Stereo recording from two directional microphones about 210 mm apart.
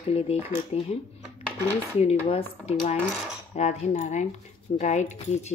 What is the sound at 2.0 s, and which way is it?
Speech, 30° left (ahead or behind).